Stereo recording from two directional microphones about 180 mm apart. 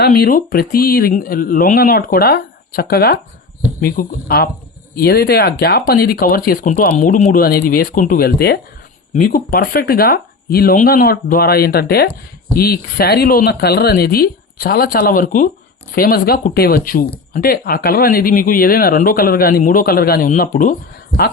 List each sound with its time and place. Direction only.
0.0 s speech: 60° left (ahead or behind)